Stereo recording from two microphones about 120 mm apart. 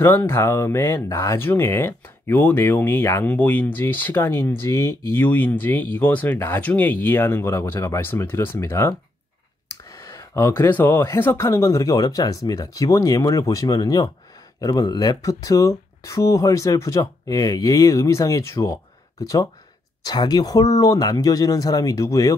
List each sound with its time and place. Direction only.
0.0 s speech: 20° left (ahead or behind)